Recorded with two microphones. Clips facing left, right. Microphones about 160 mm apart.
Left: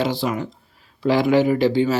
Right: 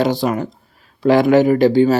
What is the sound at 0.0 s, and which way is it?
A woman's voice, 45° right (ahead or behind).